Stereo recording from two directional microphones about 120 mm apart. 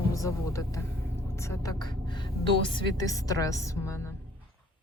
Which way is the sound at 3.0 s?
30° left (ahead or behind).